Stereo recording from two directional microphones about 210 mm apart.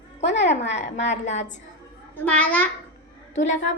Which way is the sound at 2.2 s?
5° left (ahead or behind).